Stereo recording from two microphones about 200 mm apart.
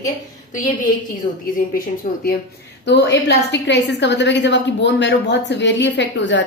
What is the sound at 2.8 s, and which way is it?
A woman's voice, 60° left (ahead or behind).